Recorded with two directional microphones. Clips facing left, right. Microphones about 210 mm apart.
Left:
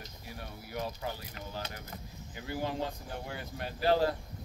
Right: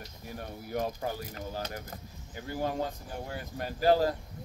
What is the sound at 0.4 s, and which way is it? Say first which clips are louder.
Speech: right 5 dB; 45° right (ahead or behind).